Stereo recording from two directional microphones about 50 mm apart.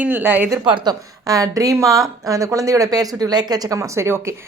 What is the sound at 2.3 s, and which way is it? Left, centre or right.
Speech, right.